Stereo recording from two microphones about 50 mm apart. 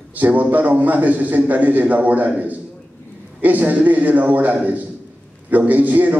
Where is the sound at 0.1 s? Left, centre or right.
Right.